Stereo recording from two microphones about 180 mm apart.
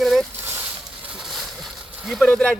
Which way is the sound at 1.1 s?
Centre (ahead or behind).